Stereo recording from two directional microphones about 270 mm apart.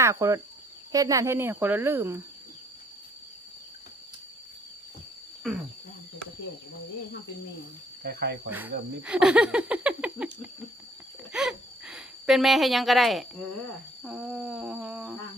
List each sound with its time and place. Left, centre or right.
0.0 s speech: centre
8.0 s speech: right
8.4 s speech: centre
11.3 s a sound: centre
14.0 s speech: centre